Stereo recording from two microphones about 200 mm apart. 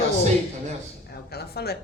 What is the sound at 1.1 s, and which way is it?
Speech, 55° left (ahead or behind).